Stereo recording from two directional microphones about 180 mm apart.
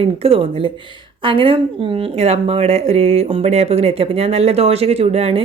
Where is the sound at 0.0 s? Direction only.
30° right (ahead or behind).